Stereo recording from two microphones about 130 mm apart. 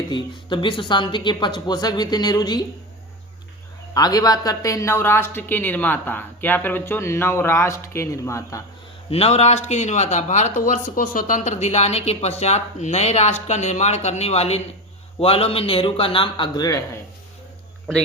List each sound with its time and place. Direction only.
0.1 s speech: 40° left (ahead or behind)
3.9 s speech: 30° left (ahead or behind)
9.0 s a man's voice: 50° left (ahead or behind); by 17.0 s 25° left (ahead or behind)